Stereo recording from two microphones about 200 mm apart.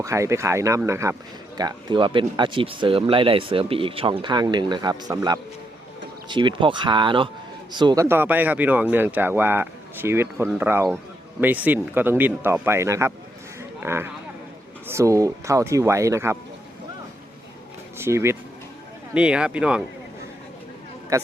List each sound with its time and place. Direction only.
0.0 s speech: 15° right (ahead or behind)
8.0 s speech: 10° right (ahead or behind)
17.9 s speech: 10° right (ahead or behind)
21.1 s a man's voice: 15° right (ahead or behind)